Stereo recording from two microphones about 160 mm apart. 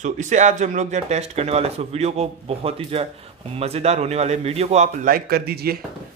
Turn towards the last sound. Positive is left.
turn(degrees=-80)